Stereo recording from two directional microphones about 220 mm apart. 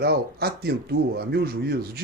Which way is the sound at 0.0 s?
45° right (ahead or behind).